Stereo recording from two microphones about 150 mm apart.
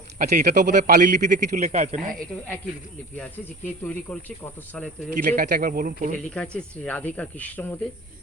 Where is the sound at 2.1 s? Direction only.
5° left (ahead or behind).